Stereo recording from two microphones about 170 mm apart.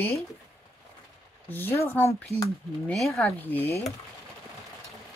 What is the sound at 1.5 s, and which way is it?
Speech, 15° left (ahead or behind).